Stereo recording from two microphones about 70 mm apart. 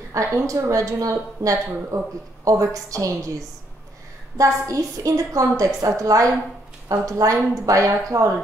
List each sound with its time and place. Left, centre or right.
0.1 s speech: right
4.6 s a woman's voice: right